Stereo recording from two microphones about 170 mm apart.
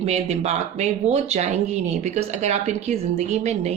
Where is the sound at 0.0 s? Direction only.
40° right (ahead or behind).